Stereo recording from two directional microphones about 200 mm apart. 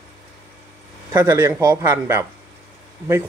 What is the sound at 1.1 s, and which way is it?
A man's voice, 15° right (ahead or behind).